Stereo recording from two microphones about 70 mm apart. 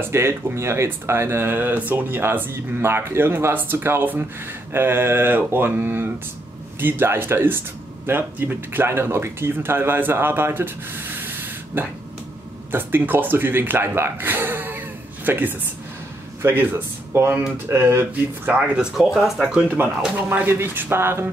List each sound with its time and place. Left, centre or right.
0.1 s speech: right
19.1 s speech: centre
19.5 s speech: right
20.2 s speech: right